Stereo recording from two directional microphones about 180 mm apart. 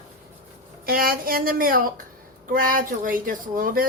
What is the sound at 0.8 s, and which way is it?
Speech, 55° right (ahead or behind).